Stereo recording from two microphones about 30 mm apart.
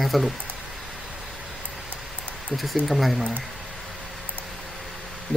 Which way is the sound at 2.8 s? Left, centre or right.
Centre.